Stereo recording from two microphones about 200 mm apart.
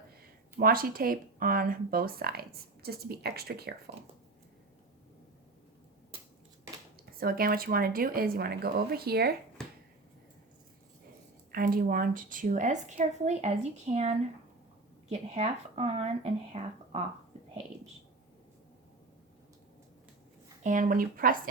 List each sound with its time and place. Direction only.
0.5 s speech: 45° right (ahead or behind)
7.0 s speech: 50° right (ahead or behind)
11.5 s a woman's voice: 45° right (ahead or behind)
20.7 s speech: 40° right (ahead or behind)